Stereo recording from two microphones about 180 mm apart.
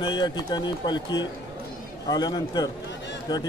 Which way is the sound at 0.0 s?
25° left (ahead or behind).